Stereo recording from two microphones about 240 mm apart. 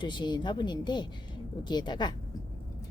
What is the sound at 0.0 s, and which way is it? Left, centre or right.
A woman's voice, centre.